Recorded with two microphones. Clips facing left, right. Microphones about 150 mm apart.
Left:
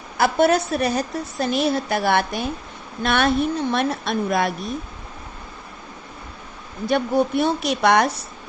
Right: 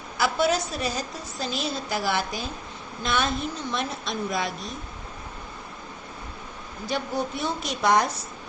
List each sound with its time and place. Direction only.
0.2 s a woman's voice: 55° left (ahead or behind)
6.8 s a woman's voice: 60° left (ahead or behind)